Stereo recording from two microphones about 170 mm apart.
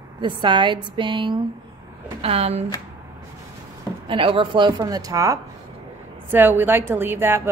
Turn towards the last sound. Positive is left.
turn(degrees=-10)  # may be behind; listen again after turning